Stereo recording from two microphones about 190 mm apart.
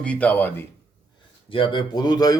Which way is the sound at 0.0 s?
5° left (ahead or behind).